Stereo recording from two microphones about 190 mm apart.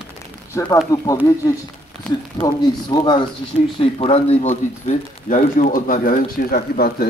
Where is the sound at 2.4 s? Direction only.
20° left (ahead or behind).